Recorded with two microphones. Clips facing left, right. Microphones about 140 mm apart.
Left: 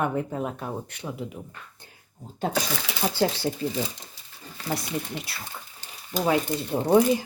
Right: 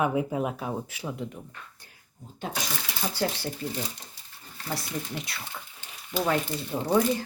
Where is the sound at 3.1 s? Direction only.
25° left (ahead or behind).